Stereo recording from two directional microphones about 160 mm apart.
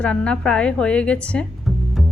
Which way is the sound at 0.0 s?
5° left (ahead or behind).